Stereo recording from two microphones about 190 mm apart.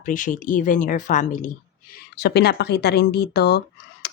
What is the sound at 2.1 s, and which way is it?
Speech, 60° left (ahead or behind).